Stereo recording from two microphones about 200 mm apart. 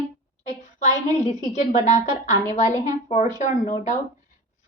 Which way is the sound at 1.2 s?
35° left (ahead or behind).